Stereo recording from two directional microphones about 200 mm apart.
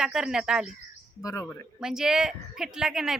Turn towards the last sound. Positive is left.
turn(degrees=-5)  # may be behind; listen again after turning